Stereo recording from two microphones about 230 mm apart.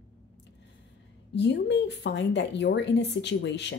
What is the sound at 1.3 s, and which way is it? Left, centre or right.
Speech, left.